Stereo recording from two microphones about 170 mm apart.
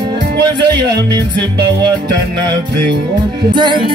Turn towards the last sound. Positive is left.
turn(degrees=-25)  # may be behind; listen again after turning